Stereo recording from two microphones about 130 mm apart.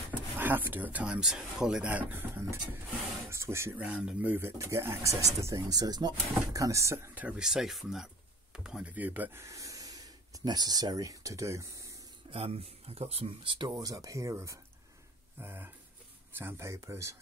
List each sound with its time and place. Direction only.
0.1 s speech: 15° right (ahead or behind)
3.8 s speech: 10° right (ahead or behind)
12.3 s speech: 45° right (ahead or behind)
13.7 s speech: 25° right (ahead or behind)
15.3 s a sound: 15° right (ahead or behind)
16.3 s speech: 20° right (ahead or behind)